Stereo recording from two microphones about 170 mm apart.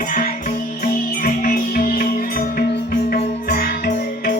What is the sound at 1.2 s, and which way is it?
Music, 55° left (ahead or behind).